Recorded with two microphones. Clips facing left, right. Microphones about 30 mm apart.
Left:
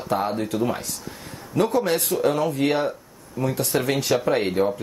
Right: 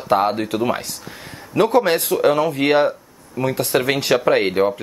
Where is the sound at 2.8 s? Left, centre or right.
Right.